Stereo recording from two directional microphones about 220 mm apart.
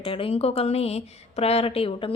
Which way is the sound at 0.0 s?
25° left (ahead or behind).